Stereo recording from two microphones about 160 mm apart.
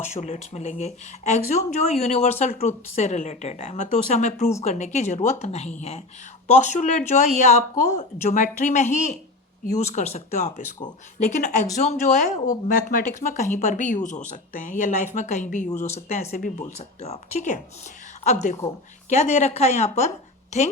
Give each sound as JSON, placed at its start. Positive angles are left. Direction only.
{"t": 0.0, "sound": "speech", "side_deg": 45}